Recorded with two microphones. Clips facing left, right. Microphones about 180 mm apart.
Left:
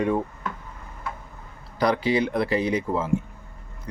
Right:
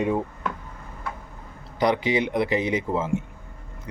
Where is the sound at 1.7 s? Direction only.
20° right (ahead or behind).